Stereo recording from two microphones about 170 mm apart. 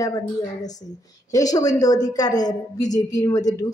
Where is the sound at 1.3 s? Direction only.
20° left (ahead or behind).